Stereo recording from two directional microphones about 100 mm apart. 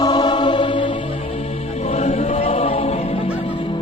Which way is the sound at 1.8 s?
90° left.